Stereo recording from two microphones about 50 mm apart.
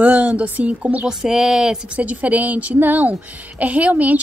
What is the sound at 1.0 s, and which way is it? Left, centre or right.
Speech, centre.